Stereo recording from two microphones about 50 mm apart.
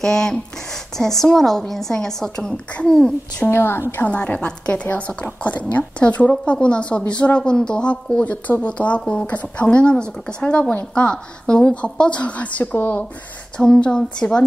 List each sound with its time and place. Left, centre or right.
0.0 s a woman's voice: centre
2.5 s a woman's voice: left
3.4 s a woman's voice: left
4.0 s a woman's voice: left
13.7 s a woman's voice: left